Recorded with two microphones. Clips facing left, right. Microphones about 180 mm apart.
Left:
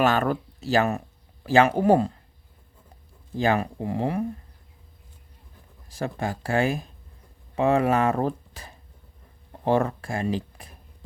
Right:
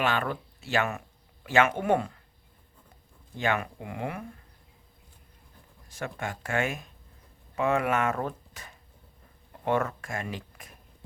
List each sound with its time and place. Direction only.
0.0 s speech: 40° left (ahead or behind)
3.3 s speech: 35° left (ahead or behind)
5.9 s speech: 35° left (ahead or behind)